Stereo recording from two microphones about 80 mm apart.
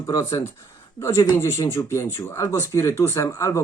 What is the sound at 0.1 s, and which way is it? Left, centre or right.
Speech, left.